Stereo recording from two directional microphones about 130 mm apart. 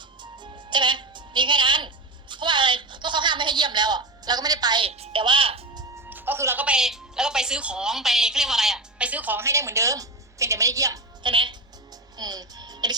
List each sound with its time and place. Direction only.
0.2 s music: 35° right (ahead or behind)
2.3 s a sound: 35° right (ahead or behind)
4.9 s speech: 45° right (ahead or behind)
6.1 s speech: 15° right (ahead or behind)
11.2 s a woman's voice: 40° right (ahead or behind)
12.1 s music: 30° right (ahead or behind)